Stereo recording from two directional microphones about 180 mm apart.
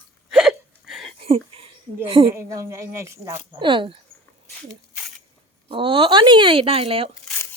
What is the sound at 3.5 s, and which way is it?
Speech, 25° right (ahead or behind).